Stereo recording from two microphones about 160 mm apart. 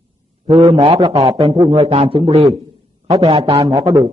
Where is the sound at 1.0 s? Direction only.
20° right (ahead or behind).